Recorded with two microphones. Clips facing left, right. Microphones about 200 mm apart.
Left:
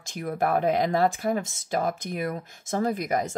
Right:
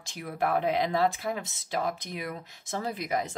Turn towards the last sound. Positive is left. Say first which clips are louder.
# left 5 dB
turn(degrees=45)  # may be behind; listen again after turning